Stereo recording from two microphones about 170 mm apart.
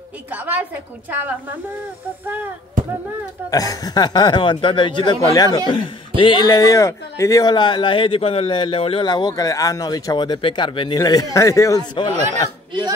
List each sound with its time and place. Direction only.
2.2 s speech: 10° right (ahead or behind)
3.4 s speech: 20° left (ahead or behind)